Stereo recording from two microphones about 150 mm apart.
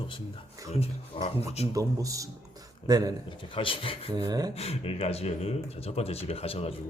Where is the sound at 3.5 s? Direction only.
35° left (ahead or behind).